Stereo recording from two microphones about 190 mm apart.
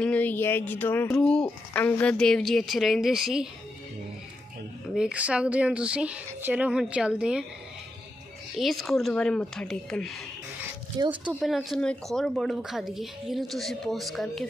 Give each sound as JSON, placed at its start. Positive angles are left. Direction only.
{"t": 0.0, "sound": "a woman's voice", "side_deg": 10}
{"t": 4.9, "sound": "a woman's voice", "side_deg": -5}
{"t": 8.5, "sound": "a woman's voice", "side_deg": 0}
{"t": 10.9, "sound": "speech", "side_deg": -20}
{"t": 11.3, "sound": "a woman's voice", "side_deg": 0}